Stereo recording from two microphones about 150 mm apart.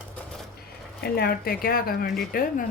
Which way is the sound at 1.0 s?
90° left.